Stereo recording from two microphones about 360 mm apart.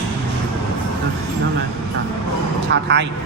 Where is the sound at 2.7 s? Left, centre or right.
Right.